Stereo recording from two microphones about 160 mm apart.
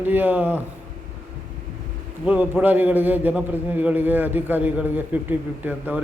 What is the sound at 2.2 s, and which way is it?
A man's voice, 10° right (ahead or behind).